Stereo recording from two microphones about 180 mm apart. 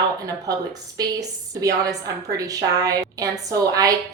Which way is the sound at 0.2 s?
20° right (ahead or behind).